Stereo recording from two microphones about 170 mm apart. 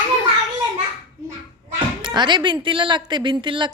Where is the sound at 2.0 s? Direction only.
30° right (ahead or behind).